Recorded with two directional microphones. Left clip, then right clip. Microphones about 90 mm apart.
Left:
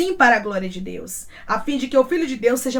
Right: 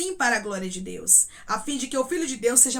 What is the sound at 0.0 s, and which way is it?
Speech, 25° right (ahead or behind).